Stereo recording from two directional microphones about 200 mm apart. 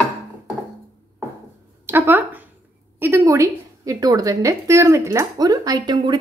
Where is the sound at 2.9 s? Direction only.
15° right (ahead or behind).